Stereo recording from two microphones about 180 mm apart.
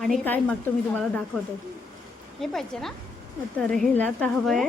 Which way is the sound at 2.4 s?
Centre (ahead or behind).